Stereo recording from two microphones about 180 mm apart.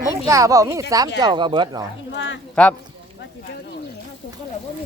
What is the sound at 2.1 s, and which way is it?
Speech, 90° left.